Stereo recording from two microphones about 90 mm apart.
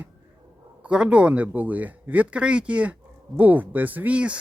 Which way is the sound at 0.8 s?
10° right (ahead or behind).